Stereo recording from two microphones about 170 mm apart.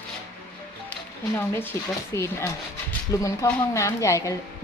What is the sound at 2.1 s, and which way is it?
A woman's voice, 15° left (ahead or behind).